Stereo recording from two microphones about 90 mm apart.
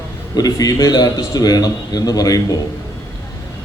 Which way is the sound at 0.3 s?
45° left (ahead or behind).